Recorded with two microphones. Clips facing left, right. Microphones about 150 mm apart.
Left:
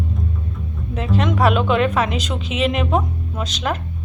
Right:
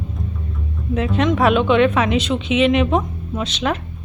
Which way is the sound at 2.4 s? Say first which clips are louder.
Right 7 dB; 40° left (ahead or behind).